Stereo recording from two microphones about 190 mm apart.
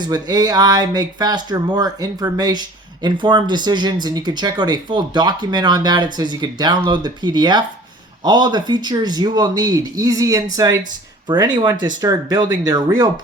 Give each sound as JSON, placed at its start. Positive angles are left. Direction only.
{"t": 0.0, "sound": "speech", "side_deg": -20}